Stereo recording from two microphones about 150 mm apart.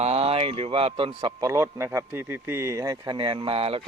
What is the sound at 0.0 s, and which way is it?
Speech, 40° right (ahead or behind).